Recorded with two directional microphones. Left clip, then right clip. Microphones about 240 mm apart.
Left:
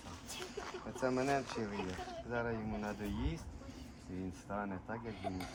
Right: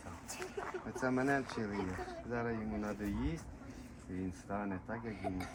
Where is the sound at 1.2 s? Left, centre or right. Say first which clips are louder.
Right 1 dB; left.